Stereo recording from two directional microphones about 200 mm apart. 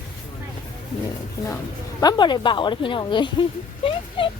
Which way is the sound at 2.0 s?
20° left (ahead or behind).